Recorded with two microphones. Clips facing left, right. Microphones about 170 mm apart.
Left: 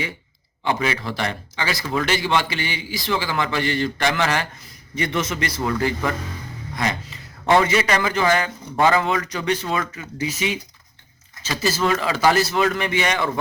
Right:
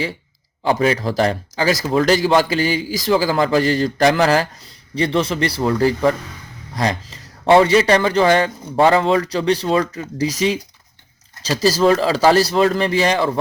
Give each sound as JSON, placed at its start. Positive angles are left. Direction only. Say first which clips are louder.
{"t": 0.6, "sound": "a man's voice", "louder": "right 6 dB", "side_deg": -40}